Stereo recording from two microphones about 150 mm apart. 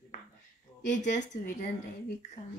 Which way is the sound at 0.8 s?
55° left (ahead or behind).